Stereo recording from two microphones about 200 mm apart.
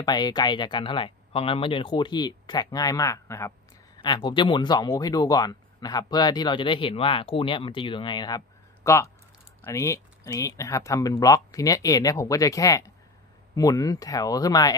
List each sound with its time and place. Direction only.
0.0 s speech: 20° left (ahead or behind)